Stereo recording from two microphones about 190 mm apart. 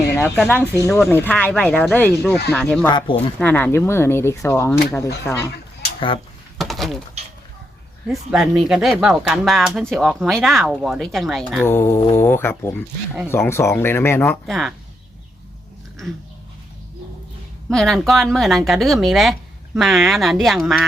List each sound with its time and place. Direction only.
0.2 s a woman's voice: 10° left (ahead or behind)
2.8 s speech: 25° left (ahead or behind)
3.4 s speech: 10° left (ahead or behind)
5.3 s a woman's voice: centre (ahead or behind)
6.6 s door: centre (ahead or behind)
8.0 s a woman's voice: centre (ahead or behind)
11.6 s speech: 10° left (ahead or behind)
17.7 s a woman's voice: centre (ahead or behind)